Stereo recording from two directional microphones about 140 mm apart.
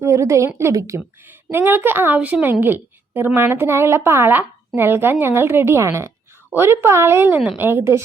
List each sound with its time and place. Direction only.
0.0 s a woman's voice: 20° right (ahead or behind)